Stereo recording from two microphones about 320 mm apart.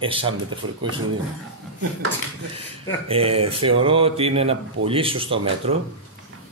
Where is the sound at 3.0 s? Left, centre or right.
Centre.